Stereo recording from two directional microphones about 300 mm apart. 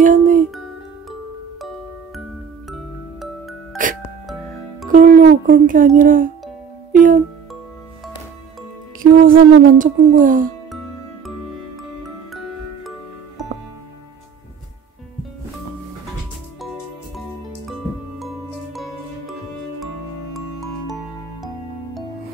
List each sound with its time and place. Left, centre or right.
0.0 s speech: right
4.8 s speech: right
9.0 s speech: right
18.2 s music: centre
20.3 s music: centre